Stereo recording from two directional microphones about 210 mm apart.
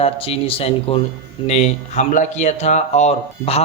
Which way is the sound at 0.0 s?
25° left (ahead or behind).